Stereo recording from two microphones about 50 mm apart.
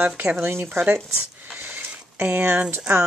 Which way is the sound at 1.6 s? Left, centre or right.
Right.